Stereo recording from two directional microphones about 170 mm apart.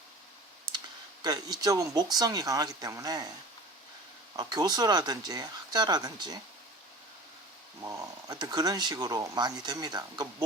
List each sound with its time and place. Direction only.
1.2 s speech: 25° right (ahead or behind)
4.4 s speech: 25° right (ahead or behind)
7.9 s speech: 25° right (ahead or behind)